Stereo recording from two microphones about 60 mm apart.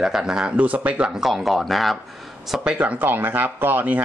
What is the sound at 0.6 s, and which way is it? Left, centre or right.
Speech, right.